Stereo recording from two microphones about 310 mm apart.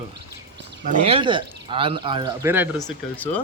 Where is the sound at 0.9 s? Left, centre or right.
Centre.